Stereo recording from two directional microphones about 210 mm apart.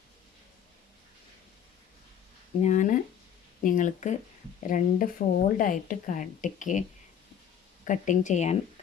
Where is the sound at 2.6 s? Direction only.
35° left (ahead or behind).